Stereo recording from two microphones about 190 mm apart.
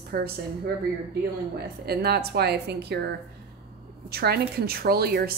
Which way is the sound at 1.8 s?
55° right (ahead or behind).